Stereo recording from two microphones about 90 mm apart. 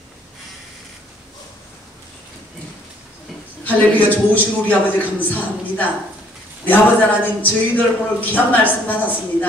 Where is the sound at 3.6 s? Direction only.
20° left (ahead or behind).